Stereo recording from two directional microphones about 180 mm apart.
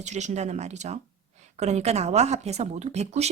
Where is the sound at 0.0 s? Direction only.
40° right (ahead or behind).